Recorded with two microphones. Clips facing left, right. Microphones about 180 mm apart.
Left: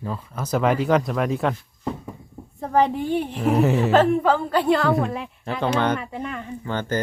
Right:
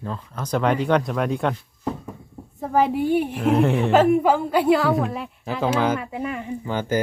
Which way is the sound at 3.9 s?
10° right (ahead or behind).